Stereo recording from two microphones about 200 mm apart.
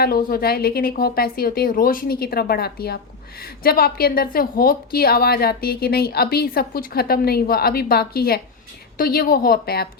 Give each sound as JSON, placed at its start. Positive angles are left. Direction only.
{"t": 0.0, "sound": "a woman's voice", "side_deg": 50}